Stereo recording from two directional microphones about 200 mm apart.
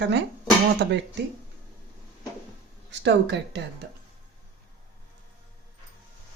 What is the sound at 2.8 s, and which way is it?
Speech, 60° right (ahead or behind).